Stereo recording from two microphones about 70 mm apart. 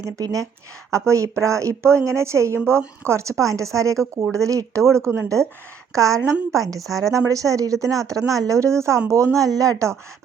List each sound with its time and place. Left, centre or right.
0.2 s a woman's voice: right
0.9 s a woman's voice: right